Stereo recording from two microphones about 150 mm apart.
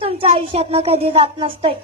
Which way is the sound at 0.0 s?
40° right (ahead or behind).